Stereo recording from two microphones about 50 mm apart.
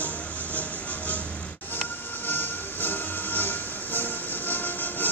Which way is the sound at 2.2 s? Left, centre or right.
Left.